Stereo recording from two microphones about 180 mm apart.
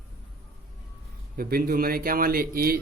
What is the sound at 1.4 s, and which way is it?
Speech, 55° right (ahead or behind).